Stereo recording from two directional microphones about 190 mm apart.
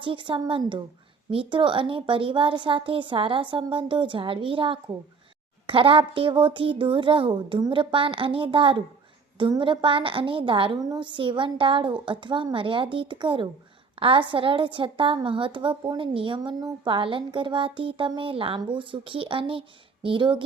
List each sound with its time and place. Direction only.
0.0 s a woman's voice: 25° right (ahead or behind)